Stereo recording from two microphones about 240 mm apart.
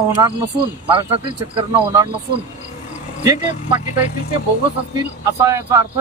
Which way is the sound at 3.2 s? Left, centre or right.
Centre.